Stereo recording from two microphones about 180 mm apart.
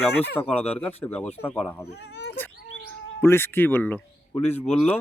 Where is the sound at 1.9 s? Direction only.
70° left (ahead or behind).